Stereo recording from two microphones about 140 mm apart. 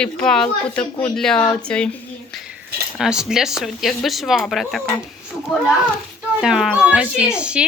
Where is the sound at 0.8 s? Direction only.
35° left (ahead or behind).